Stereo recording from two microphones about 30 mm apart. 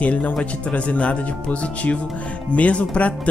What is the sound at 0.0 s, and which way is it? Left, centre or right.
Speech, left.